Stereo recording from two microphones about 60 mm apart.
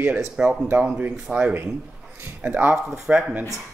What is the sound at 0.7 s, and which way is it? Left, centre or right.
Speech, centre.